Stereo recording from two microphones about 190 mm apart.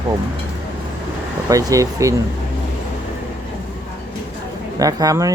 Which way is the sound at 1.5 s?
15° right (ahead or behind).